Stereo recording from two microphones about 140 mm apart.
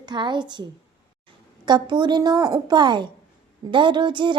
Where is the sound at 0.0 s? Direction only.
30° right (ahead or behind).